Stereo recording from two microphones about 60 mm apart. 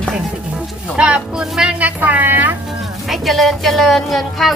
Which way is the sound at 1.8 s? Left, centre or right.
Right.